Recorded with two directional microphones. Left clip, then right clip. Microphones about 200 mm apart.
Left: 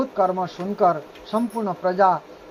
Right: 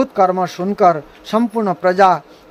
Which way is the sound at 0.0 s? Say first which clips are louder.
Right 7 dB; 35° right (ahead or behind).